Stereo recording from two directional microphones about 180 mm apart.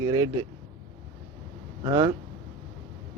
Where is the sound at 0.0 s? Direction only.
20° right (ahead or behind).